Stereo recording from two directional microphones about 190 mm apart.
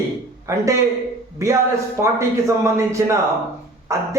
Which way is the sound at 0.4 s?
15° right (ahead or behind).